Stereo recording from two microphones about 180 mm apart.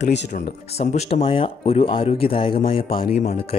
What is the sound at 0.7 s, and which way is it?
Speech, 35° left (ahead or behind).